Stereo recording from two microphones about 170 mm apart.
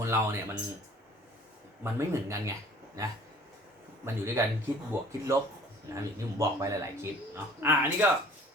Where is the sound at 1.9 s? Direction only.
15° right (ahead or behind).